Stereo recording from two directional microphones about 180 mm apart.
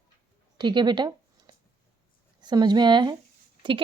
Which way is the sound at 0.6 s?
25° right (ahead or behind).